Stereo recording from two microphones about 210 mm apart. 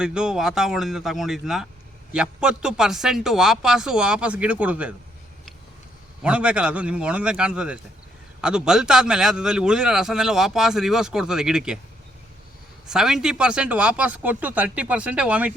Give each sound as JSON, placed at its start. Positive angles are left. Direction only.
{"t": 0.0, "sound": "a man's voice", "side_deg": -5}
{"t": 6.2, "sound": "a man's voice", "side_deg": -5}
{"t": 12.9, "sound": "speech", "side_deg": 0}